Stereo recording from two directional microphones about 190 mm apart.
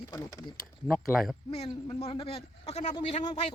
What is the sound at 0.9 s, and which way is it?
Speech, centre (ahead or behind).